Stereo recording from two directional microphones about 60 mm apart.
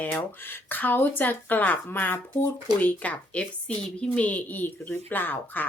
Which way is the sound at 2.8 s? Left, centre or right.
Left.